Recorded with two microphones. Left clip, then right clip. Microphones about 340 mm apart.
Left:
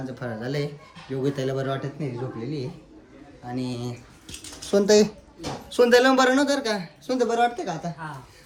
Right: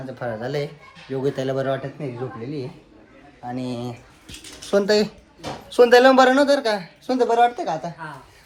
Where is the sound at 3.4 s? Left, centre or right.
Centre.